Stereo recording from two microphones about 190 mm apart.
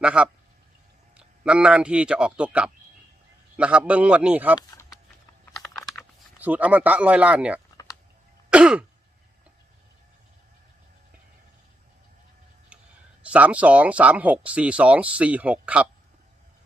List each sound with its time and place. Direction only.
0.0 s speech: 5° right (ahead or behind)
4.7 s a sound: 20° left (ahead or behind)
6.4 s speech: 10° right (ahead or behind)
8.4 s throat clearing: 5° right (ahead or behind)
13.2 s speech: 5° right (ahead or behind)